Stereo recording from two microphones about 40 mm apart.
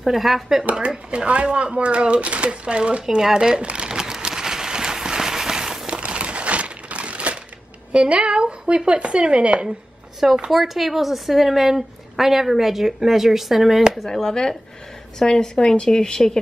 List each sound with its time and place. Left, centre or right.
0.0 s a woman's voice: centre
0.8 s speech: right
3.3 s a sound: right
5.9 s crumpling: right
7.9 s speech: right
10.5 s a woman's voice: centre
14.0 s a woman's voice: centre